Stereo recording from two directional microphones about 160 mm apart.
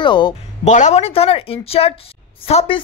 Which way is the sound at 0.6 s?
45° left (ahead or behind).